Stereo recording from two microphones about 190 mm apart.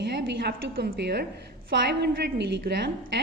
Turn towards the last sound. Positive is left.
turn(degrees=-60)  # may be behind; listen again after turning